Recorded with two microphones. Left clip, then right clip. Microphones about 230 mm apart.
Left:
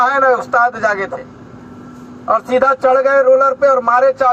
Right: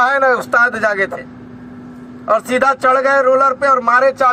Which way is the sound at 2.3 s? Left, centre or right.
Right.